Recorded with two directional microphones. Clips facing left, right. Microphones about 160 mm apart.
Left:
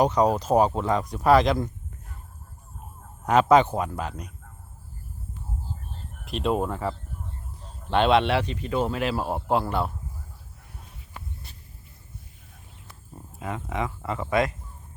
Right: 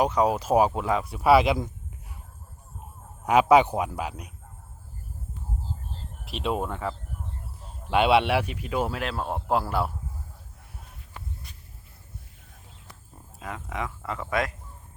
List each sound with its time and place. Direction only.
0.0 s speech: 5° right (ahead or behind)
3.2 s speech: 10° right (ahead or behind)
6.2 s speech: centre (ahead or behind)
13.4 s speech: centre (ahead or behind)